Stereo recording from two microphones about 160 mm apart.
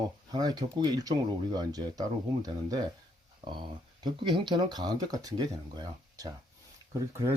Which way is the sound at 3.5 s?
30° right (ahead or behind).